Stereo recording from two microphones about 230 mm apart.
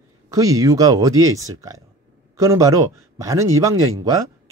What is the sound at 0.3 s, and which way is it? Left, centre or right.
Speech, centre.